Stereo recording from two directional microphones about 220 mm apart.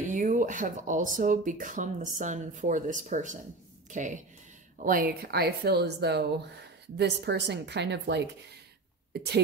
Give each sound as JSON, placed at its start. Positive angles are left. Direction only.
{"t": 0.1, "sound": "speech", "side_deg": -35}